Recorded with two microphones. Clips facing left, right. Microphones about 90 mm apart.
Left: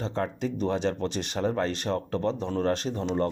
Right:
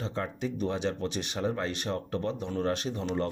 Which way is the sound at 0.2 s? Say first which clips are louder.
Left 3 dB; 40° left (ahead or behind).